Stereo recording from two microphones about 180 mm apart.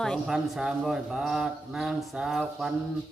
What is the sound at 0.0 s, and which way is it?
Speech, centre (ahead or behind).